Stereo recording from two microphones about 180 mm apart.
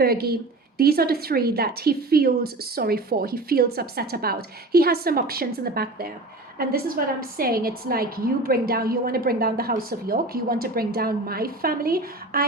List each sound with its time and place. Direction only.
0.0 s a woman's voice: 60° right (ahead or behind)